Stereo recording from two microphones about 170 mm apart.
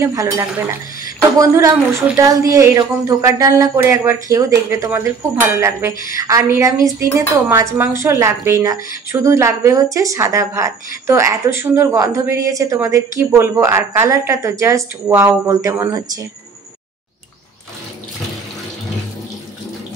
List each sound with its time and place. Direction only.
0.0 s a woman's voice: 20° right (ahead or behind)